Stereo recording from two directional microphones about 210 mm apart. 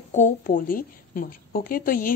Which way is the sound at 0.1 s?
35° left (ahead or behind).